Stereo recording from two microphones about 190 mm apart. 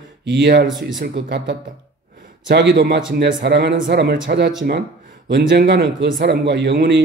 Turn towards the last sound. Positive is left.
turn(degrees=-65)  # may be behind; listen again after turning